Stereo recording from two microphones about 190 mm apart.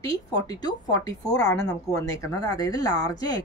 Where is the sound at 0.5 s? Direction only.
20° left (ahead or behind).